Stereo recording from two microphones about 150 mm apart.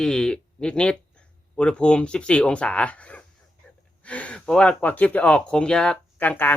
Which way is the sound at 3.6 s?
10° left (ahead or behind).